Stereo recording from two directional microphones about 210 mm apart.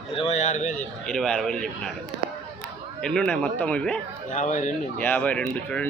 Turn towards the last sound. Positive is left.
turn(degrees=5)  # may be behind; listen again after turning